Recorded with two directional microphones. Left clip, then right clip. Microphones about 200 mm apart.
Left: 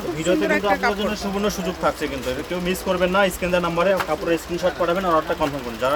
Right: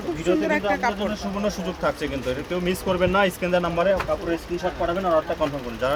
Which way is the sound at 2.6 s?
10° right (ahead or behind).